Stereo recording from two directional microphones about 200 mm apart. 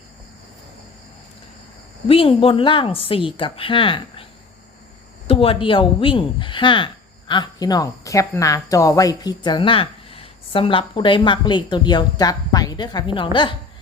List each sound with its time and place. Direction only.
2.0 s speech: 30° left (ahead or behind)
5.3 s speech: 25° left (ahead or behind)